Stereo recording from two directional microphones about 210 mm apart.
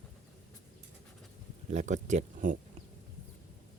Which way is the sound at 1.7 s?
35° right (ahead or behind).